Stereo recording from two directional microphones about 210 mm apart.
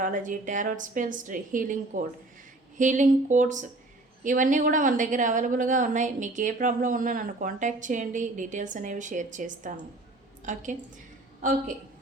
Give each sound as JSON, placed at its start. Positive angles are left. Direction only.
{"t": 0.0, "sound": "a woman's voice", "side_deg": -40}